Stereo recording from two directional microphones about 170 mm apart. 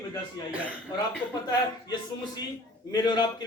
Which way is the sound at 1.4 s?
25° left (ahead or behind).